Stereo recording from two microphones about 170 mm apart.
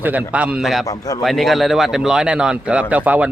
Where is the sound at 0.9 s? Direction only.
20° left (ahead or behind).